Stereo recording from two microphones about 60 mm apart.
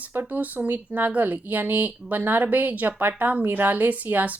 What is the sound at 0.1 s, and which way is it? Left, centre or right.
Speech, right.